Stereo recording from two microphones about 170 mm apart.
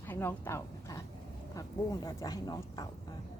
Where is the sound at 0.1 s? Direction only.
15° left (ahead or behind).